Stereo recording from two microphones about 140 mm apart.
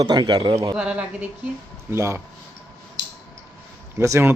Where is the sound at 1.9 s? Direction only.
20° right (ahead or behind).